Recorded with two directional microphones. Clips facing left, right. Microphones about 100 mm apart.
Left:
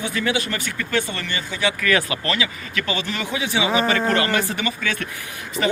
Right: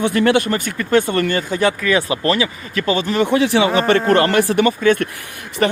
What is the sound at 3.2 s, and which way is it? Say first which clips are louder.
Speech: right 7 dB; 70° right (ahead or behind).